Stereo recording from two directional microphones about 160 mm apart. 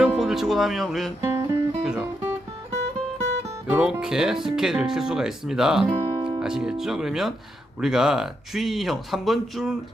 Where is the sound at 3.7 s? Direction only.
5° right (ahead or behind).